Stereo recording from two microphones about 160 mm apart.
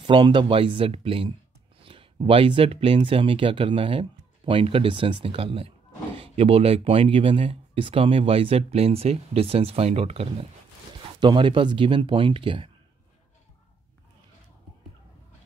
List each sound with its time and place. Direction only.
0.0 s speech: 30° right (ahead or behind)